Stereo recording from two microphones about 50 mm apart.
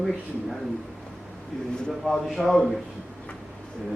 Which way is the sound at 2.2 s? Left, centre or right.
Centre.